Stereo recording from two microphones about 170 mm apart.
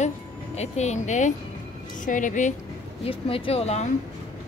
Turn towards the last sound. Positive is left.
turn(degrees=40)  # may be behind; listen again after turning